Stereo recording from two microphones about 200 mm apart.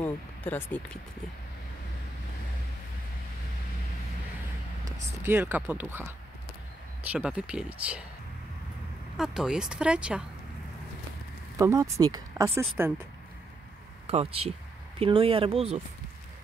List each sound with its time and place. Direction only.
0.0 s speech: 10° left (ahead or behind)
4.8 s speech: 10° right (ahead or behind)
7.1 s speech: 5° right (ahead or behind)
9.1 s speech: centre (ahead or behind)
11.5 s speech: 15° right (ahead or behind)
14.0 s speech: 30° right (ahead or behind)